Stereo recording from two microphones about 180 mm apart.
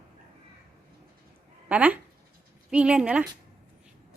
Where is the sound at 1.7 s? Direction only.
10° right (ahead or behind).